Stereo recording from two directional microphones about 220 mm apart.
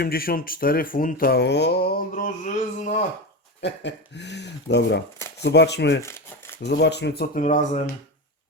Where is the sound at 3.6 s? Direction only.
50° left (ahead or behind).